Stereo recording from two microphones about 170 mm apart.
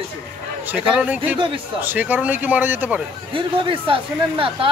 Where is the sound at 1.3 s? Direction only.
30° right (ahead or behind).